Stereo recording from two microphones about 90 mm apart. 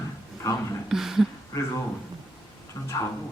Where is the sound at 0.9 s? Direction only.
5° right (ahead or behind).